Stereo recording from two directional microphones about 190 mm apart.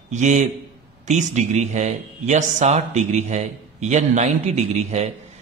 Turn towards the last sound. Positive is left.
turn(degrees=-35)  # may be behind; listen again after turning